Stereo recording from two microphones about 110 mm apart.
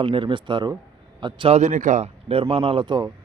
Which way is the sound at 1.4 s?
85° right.